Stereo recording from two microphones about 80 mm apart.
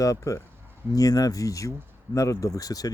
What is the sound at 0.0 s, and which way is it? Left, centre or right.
Speech, left.